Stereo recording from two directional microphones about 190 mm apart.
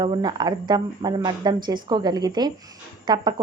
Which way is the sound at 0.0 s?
20° right (ahead or behind).